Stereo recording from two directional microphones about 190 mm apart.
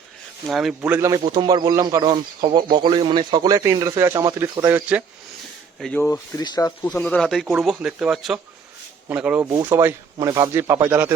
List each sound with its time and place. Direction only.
0.4 s speech: centre (ahead or behind)
0.8 s speech: 15° right (ahead or behind)
5.8 s speech: 10° left (ahead or behind)
6.3 s speech: 20° left (ahead or behind)
7.0 s speech: 5° left (ahead or behind); by 11.1 s 10° right (ahead or behind)